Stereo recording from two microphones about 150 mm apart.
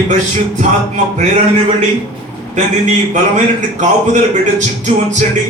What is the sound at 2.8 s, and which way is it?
A man's voice, 55° right (ahead or behind).